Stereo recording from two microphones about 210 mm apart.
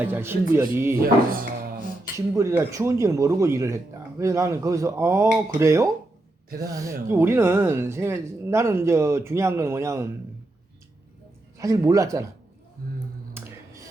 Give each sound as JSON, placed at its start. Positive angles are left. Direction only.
{"t": 0.0, "sound": "speech", "side_deg": -10}
{"t": 1.0, "sound": "speech", "side_deg": -45}
{"t": 2.1, "sound": "speech", "side_deg": -15}
{"t": 11.5, "sound": "speech", "side_deg": -15}
{"t": 12.8, "sound": "speech", "side_deg": -45}
{"t": 13.4, "sound": "music", "side_deg": -10}